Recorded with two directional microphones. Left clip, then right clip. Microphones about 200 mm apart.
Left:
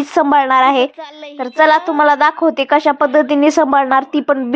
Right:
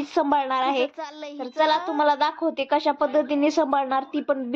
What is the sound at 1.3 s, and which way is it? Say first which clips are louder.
Speech: left 11 dB; 25° left (ahead or behind).